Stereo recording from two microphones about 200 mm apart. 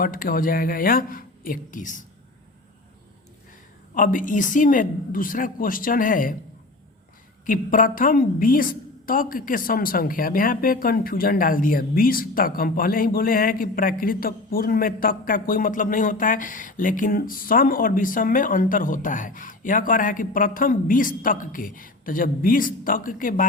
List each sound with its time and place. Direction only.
0.0 s speech: 45° left (ahead or behind)
3.9 s speech: 40° left (ahead or behind)
7.4 s speech: 45° left (ahead or behind)